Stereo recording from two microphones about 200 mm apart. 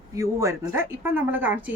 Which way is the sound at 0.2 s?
15° right (ahead or behind).